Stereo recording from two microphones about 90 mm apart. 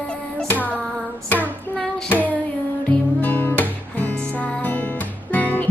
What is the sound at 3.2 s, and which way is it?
Music, 20° left (ahead or behind).